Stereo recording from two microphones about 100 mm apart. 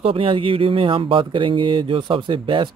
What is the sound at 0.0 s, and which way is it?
Speech, 65° right (ahead or behind).